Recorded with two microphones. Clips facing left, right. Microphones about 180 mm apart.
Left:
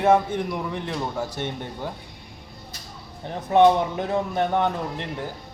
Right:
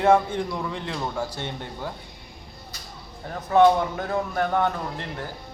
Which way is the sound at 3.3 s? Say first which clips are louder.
Left 1 dB; 20° left (ahead or behind).